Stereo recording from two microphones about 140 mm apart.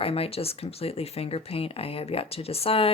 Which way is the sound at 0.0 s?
45° left (ahead or behind).